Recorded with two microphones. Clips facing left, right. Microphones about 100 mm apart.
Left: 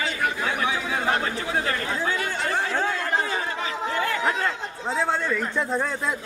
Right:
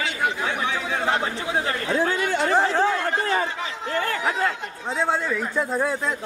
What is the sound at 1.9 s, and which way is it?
Chatter, 80° right.